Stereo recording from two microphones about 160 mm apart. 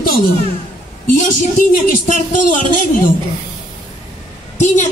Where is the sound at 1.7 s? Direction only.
55° left (ahead or behind).